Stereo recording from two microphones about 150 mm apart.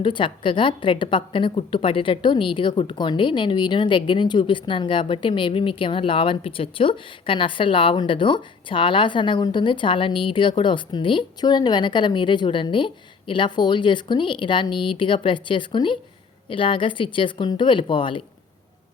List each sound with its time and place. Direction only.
0.0 s a woman's voice: 35° left (ahead or behind)